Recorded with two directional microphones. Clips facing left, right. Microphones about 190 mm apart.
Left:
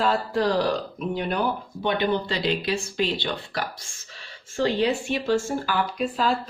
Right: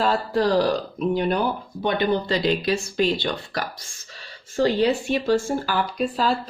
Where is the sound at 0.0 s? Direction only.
35° right (ahead or behind).